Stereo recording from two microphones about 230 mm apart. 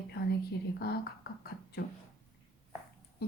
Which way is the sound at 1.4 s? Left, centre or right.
Left.